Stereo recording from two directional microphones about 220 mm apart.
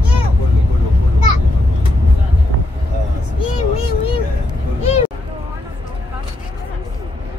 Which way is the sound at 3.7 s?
25° left (ahead or behind).